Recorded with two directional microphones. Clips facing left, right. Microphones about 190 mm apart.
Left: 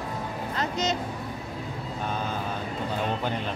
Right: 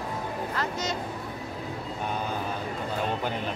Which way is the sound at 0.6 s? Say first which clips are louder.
Left 5 dB; 20° left (ahead or behind).